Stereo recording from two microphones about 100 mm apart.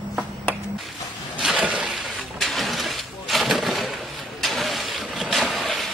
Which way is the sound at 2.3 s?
Centre (ahead or behind).